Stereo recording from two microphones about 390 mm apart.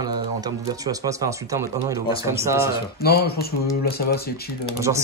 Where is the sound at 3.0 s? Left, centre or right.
Left.